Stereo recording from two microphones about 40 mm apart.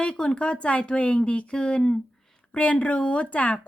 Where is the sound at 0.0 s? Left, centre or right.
Left.